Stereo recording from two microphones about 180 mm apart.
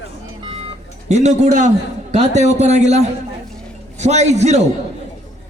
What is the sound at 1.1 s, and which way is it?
A man's voice, 40° right (ahead or behind).